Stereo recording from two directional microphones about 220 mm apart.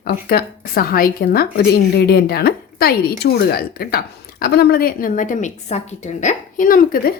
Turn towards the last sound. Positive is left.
turn(degrees=40)  # may be behind; listen again after turning